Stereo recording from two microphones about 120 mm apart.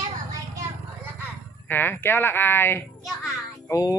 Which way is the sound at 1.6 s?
15° left (ahead or behind).